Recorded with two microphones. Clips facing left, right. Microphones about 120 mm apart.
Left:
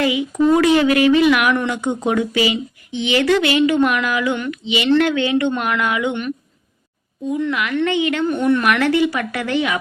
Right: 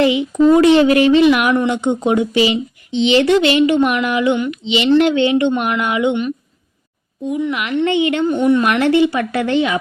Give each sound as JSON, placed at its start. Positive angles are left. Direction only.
{"t": 0.0, "sound": "speech", "side_deg": -25}